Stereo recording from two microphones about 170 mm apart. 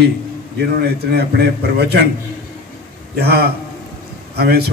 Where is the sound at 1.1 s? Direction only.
70° right (ahead or behind).